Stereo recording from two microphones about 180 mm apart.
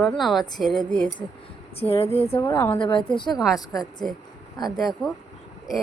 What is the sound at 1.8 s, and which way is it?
Speech, 35° left (ahead or behind).